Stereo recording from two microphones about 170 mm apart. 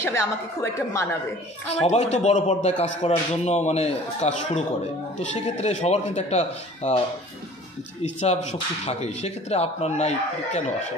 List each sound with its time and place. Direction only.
0.0 s a woman's voice: 15° left (ahead or behind)
1.9 s speech: 40° left (ahead or behind)
8.2 s speech: 40° left (ahead or behind)